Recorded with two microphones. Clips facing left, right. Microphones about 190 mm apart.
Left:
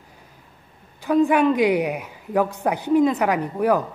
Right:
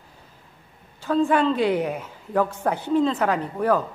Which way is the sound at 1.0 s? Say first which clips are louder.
Left 3 dB; 15° left (ahead or behind).